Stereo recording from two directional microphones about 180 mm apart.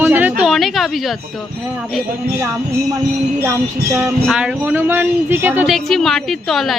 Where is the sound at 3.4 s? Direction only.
10° right (ahead or behind).